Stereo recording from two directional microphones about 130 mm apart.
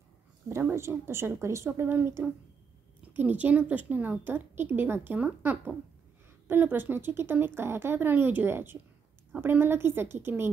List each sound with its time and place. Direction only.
0.5 s a woman's voice: 20° right (ahead or behind)